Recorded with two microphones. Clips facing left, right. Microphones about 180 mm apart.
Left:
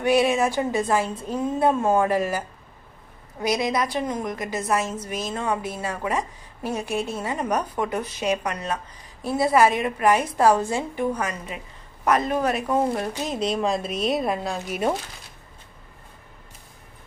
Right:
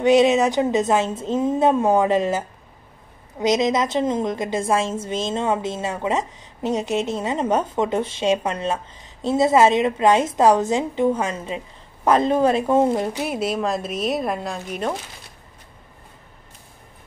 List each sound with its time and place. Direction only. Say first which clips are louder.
0.0 s a woman's voice: right 5 dB; 20° right (ahead or behind); by 15.0 s 5° left (ahead or behind)